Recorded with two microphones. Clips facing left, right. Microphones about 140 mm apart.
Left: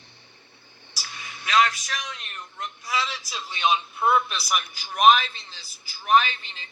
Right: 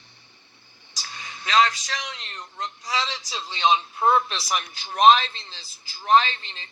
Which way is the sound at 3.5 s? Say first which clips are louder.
Right 2 dB; 20° right (ahead or behind).